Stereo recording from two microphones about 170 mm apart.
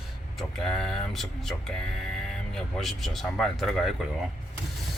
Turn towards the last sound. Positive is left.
turn(degrees=0)  # may be behind; listen again after turning